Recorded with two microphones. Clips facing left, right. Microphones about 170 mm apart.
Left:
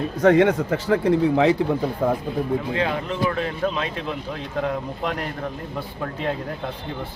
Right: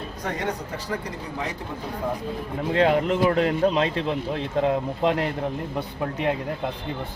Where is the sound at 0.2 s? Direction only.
75° left (ahead or behind).